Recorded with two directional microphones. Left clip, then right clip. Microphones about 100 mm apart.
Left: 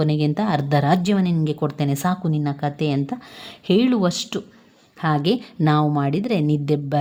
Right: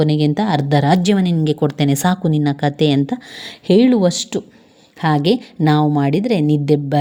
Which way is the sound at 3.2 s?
20° right (ahead or behind).